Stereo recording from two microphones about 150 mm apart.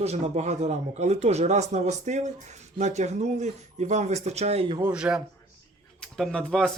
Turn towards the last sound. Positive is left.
turn(degrees=5)  # may be behind; listen again after turning